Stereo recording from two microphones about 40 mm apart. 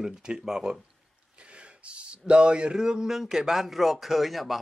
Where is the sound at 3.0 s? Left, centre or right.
Centre.